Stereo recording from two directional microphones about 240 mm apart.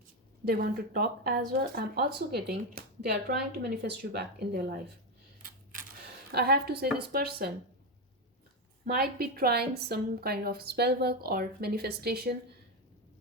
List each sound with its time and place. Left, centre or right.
0.4 s speech: right
6.3 s speech: right
8.9 s speech: right